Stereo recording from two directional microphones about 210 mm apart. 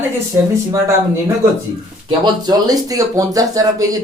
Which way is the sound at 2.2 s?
20° right (ahead or behind).